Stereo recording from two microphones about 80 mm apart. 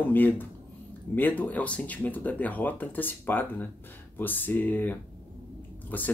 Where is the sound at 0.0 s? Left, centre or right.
Left.